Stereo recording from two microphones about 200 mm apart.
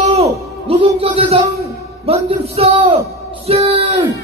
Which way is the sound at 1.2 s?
30° right (ahead or behind).